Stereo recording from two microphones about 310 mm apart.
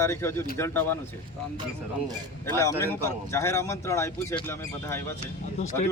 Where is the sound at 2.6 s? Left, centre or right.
Centre.